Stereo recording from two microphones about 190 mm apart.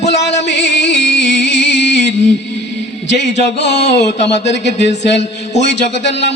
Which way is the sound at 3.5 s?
65° left (ahead or behind).